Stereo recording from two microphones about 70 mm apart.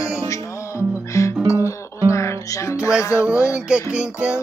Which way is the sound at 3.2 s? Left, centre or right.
Centre.